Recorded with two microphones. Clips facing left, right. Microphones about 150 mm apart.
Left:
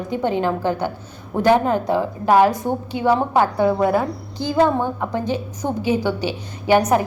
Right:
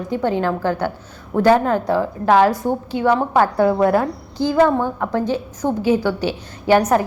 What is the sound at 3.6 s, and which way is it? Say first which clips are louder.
Speech: right 2 dB; 5° right (ahead or behind).